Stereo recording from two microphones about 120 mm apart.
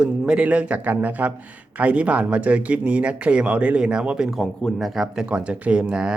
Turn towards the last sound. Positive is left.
turn(degrees=-5)  # may be behind; listen again after turning